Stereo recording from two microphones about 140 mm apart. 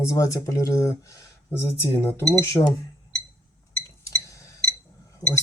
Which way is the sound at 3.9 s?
25° left (ahead or behind).